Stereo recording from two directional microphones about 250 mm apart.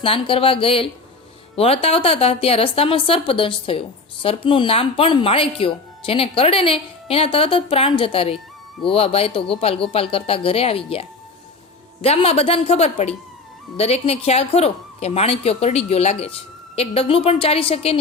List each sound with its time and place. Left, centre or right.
0.0 s speech: left
12.0 s speech: left